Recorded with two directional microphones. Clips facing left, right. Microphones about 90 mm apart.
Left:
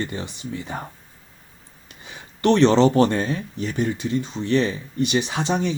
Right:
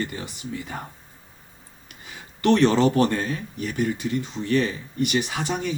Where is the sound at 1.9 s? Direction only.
20° left (ahead or behind).